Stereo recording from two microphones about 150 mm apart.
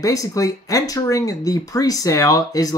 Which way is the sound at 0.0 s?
25° left (ahead or behind).